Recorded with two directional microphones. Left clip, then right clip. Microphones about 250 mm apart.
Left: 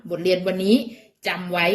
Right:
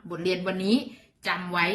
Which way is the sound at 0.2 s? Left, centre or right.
Centre.